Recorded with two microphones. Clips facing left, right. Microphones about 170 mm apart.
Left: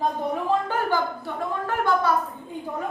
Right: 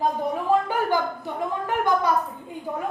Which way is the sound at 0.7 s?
15° right (ahead or behind).